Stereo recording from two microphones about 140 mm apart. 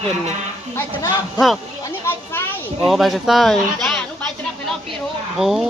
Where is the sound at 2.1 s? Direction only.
15° left (ahead or behind).